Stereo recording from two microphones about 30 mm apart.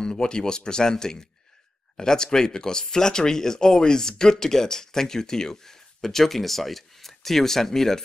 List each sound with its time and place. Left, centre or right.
0.0 s speech: left